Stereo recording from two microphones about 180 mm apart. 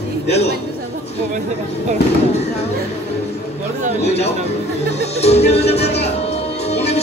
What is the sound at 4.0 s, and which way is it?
Speech, 35° left (ahead or behind).